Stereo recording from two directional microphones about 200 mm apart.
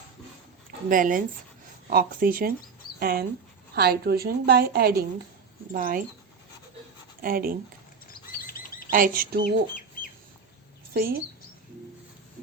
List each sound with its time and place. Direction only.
0.9 s a woman's voice: 40° right (ahead or behind)
7.2 s a woman's voice: 45° right (ahead or behind)
8.4 s bird: 45° left (ahead or behind)
8.9 s a woman's voice: 45° right (ahead or behind)
10.9 s a woman's voice: 50° right (ahead or behind)